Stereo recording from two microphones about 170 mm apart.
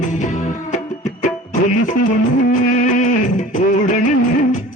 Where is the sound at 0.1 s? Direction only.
45° left (ahead or behind).